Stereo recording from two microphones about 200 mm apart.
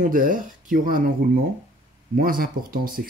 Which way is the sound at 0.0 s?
45° right (ahead or behind).